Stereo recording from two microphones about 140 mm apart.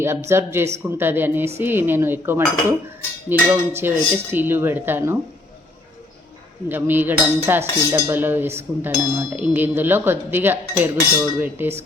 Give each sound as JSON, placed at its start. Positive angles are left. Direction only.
{"t": 0.0, "sound": "dishes", "side_deg": -20}
{"t": 6.7, "sound": "dishes", "side_deg": -15}